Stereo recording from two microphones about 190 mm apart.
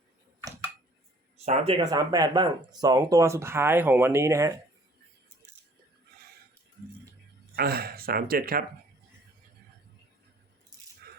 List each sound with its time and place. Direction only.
0.4 s a sound: 10° right (ahead or behind)
1.8 s speech: 20° right (ahead or behind)
7.5 s speech: 55° right (ahead or behind)